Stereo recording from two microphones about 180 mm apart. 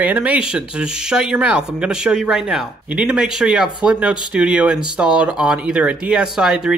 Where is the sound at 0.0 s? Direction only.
10° right (ahead or behind).